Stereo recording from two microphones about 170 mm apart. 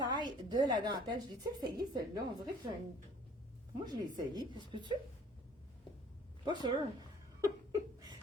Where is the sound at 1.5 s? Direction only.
20° right (ahead or behind).